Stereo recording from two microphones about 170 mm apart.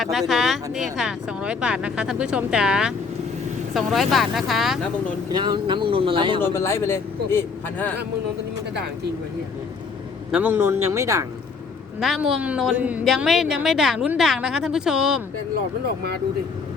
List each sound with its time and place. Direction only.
0.0 s a woman's voice: centre (ahead or behind)
5.3 s speech: 25° right (ahead or behind)
6.4 s a man's voice: 15° left (ahead or behind)
10.3 s a man's voice: 10° right (ahead or behind)
11.9 s a woman's voice: centre (ahead or behind)